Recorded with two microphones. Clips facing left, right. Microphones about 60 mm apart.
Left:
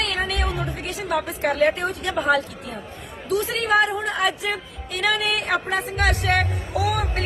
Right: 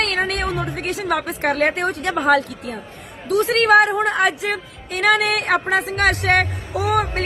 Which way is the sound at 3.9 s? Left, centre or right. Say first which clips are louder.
Right 5 dB; right.